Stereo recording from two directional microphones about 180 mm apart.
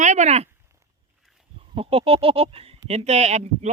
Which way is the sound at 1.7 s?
30° right (ahead or behind).